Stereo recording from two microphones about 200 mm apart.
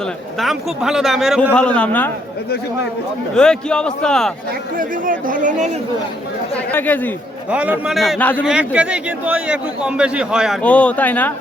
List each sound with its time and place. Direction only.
0.3 s a man's voice: centre (ahead or behind)
3.3 s a man's voice: 5° left (ahead or behind)
4.8 s speech: 45° right (ahead or behind)
6.7 s speech: 10° left (ahead or behind)
7.5 s a man's voice: 5° right (ahead or behind)
8.4 s a man's voice: 5° right (ahead or behind)